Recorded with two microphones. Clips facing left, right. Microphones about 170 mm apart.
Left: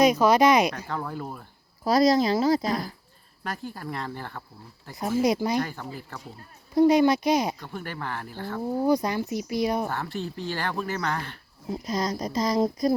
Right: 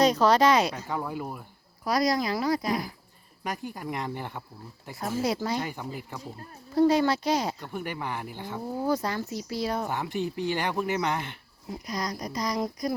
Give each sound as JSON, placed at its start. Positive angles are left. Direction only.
{"t": 0.0, "sound": "speech", "side_deg": 10}
{"t": 0.9, "sound": "speech", "side_deg": -10}
{"t": 1.8, "sound": "speech", "side_deg": 25}
{"t": 3.4, "sound": "speech", "side_deg": -15}
{"t": 4.9, "sound": "speech", "side_deg": 15}
{"t": 5.5, "sound": "speech", "side_deg": -15}
{"t": 6.7, "sound": "speech", "side_deg": 15}
{"t": 7.6, "sound": "speech", "side_deg": -15}
{"t": 8.8, "sound": "speech", "side_deg": 15}
{"t": 9.9, "sound": "speech", "side_deg": -15}
{"t": 11.7, "sound": "speech", "side_deg": 25}